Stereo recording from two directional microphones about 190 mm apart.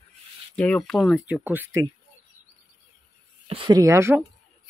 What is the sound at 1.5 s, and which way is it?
Speech, 10° right (ahead or behind).